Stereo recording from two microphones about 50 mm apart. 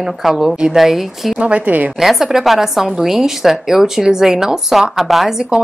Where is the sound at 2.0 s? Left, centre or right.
Centre.